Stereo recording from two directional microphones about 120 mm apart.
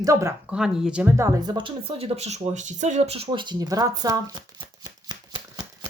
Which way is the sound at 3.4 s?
35° right (ahead or behind).